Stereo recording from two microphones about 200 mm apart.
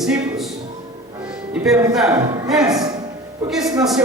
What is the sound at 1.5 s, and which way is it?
Speech, 5° right (ahead or behind).